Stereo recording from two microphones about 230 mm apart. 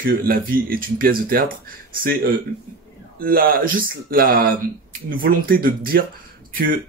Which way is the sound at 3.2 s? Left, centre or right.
Right.